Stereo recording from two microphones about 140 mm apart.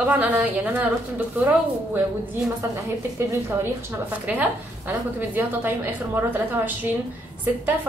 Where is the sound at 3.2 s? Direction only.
20° right (ahead or behind).